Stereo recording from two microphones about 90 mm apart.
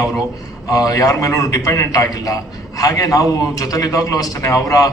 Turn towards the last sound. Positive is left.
turn(degrees=40)  # may be behind; listen again after turning